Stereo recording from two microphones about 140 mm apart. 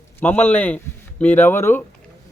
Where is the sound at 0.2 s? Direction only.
15° left (ahead or behind).